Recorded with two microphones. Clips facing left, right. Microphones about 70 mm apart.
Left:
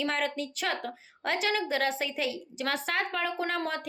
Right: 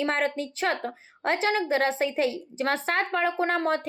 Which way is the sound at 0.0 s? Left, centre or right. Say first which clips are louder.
Right 4 dB; right.